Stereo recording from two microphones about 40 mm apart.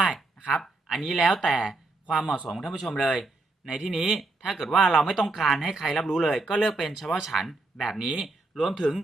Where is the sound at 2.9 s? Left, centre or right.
Left.